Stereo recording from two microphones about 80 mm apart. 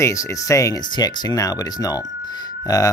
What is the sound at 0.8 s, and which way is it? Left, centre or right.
Speech, left.